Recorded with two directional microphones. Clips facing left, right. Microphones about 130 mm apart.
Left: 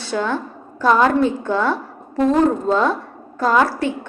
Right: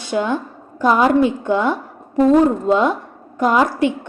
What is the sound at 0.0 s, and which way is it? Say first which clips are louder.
A woman's voice: right 2 dB; 15° right (ahead or behind).